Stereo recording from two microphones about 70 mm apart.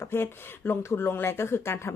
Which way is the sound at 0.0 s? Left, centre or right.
Left.